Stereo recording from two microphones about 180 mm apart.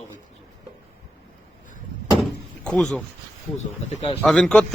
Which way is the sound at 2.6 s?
5° left (ahead or behind).